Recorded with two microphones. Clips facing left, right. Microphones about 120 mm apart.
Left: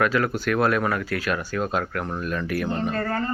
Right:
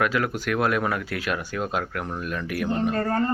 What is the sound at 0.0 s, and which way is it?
Speech, 10° right (ahead or behind).